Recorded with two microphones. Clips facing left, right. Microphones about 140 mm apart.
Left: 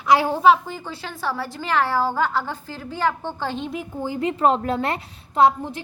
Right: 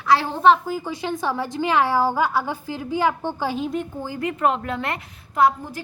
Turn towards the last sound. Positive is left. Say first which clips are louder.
# left 2 dB
turn(degrees=30)  # may be behind; listen again after turning